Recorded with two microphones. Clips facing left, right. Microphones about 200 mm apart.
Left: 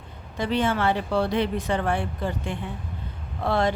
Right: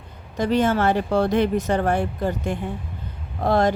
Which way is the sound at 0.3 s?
45° right (ahead or behind).